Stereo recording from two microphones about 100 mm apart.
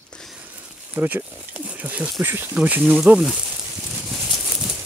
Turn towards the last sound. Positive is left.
turn(degrees=-5)  # may be behind; listen again after turning